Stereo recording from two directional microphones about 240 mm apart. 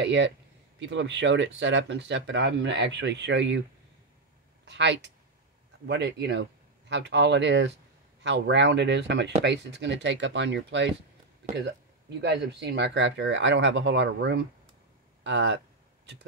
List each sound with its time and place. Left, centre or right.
0.0 s speech: right
4.6 s speech: right
12.2 s speech: right